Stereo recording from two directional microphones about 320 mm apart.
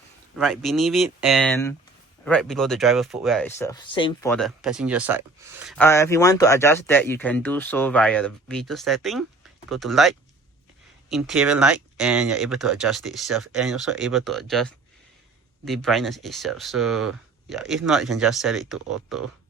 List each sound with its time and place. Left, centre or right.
0.3 s speech: centre